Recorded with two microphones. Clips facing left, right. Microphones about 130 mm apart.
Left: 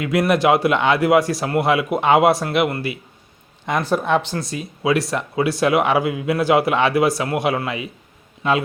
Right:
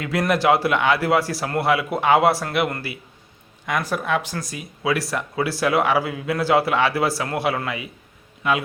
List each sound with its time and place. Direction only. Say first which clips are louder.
0.0 s speech: left 3 dB; 15° left (ahead or behind)